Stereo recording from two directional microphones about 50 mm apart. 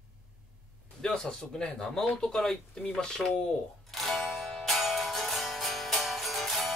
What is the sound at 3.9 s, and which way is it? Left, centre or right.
Music, centre.